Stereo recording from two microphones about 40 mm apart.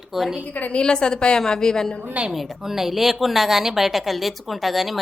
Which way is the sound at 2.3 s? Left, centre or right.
Centre.